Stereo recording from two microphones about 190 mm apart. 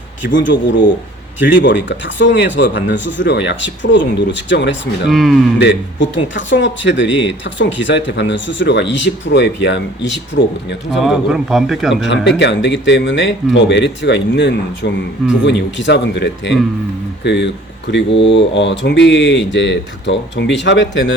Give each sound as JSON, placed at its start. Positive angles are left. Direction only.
{"t": 0.3, "sound": "speech", "side_deg": 75}
{"t": 5.0, "sound": "a man's voice", "side_deg": 0}
{"t": 5.5, "sound": "speech", "side_deg": 70}
{"t": 10.9, "sound": "a man's voice", "side_deg": 0}
{"t": 12.0, "sound": "speech", "side_deg": 70}